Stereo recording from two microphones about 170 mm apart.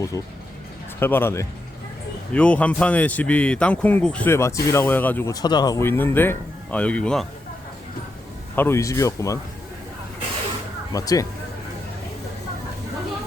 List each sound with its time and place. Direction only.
0.1 s speech: 20° left (ahead or behind); by 7.3 s 5° left (ahead or behind)
8.5 s speech: 15° left (ahead or behind)
10.9 s speech: 20° left (ahead or behind)